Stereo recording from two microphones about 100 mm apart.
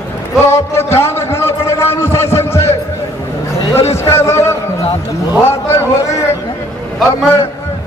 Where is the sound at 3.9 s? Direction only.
25° left (ahead or behind).